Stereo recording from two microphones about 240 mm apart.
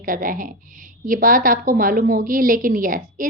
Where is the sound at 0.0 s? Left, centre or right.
Right.